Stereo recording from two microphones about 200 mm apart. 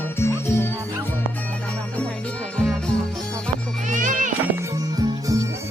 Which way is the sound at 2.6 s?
5° left (ahead or behind).